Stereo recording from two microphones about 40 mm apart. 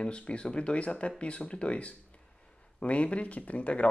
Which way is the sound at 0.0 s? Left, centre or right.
Left.